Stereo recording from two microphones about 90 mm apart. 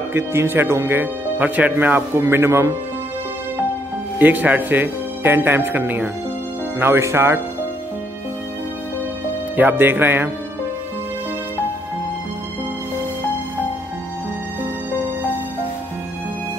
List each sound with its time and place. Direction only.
0.1 s speech: 30° right (ahead or behind)
4.2 s speech: 20° right (ahead or behind)
9.6 s speech: 20° right (ahead or behind)